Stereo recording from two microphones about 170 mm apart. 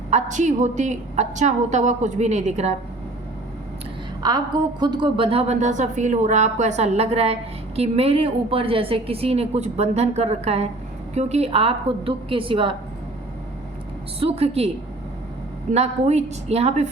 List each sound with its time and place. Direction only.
0.1 s a woman's voice: 45° right (ahead or behind)
4.2 s a woman's voice: 25° right (ahead or behind)
14.2 s a woman's voice: 35° right (ahead or behind)
15.7 s a woman's voice: 40° right (ahead or behind)